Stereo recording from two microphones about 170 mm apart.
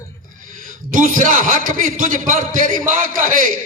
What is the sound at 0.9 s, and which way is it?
A man's voice, 50° right (ahead or behind).